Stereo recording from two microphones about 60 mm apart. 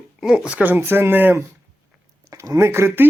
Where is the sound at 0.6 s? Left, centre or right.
Right.